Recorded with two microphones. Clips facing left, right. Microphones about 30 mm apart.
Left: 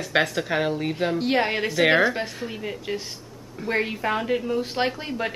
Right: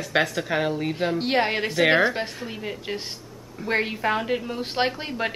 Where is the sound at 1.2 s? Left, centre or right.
Centre.